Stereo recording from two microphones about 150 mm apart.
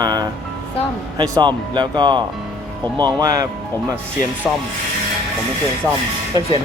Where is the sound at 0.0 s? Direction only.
25° right (ahead or behind).